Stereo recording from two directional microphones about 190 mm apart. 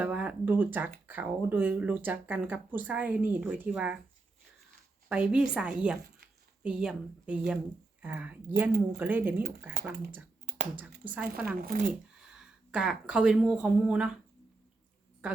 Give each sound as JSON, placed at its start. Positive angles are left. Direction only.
{"t": 0.0, "sound": "speech", "side_deg": -5}
{"t": 5.0, "sound": "speech", "side_deg": -5}
{"t": 10.8, "sound": "speech", "side_deg": -10}
{"t": 11.6, "sound": "speech", "side_deg": -45}
{"t": 12.7, "sound": "speech", "side_deg": -5}
{"t": 15.2, "sound": "speech", "side_deg": -5}